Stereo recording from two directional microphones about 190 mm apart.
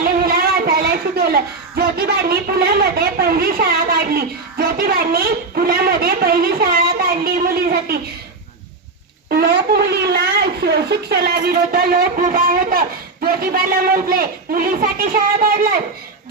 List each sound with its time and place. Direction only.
0.0 s speech: 50° right (ahead or behind)
9.3 s speech: 55° right (ahead or behind)